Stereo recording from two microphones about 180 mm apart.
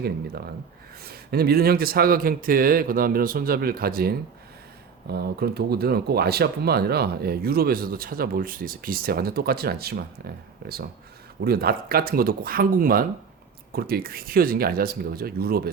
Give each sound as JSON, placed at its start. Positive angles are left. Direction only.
{"t": 1.0, "sound": "speech", "side_deg": -60}